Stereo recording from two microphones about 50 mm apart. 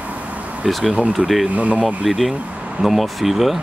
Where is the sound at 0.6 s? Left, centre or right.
Centre.